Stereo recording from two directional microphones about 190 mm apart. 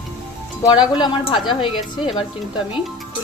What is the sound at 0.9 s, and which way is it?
A woman's voice, 25° left (ahead or behind).